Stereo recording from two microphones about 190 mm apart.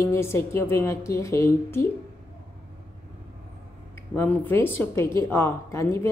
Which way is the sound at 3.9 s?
10° left (ahead or behind).